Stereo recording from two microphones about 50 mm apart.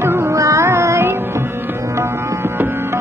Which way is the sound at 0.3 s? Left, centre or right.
Right.